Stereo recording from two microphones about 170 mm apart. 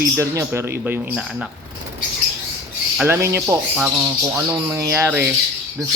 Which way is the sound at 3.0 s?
15° right (ahead or behind).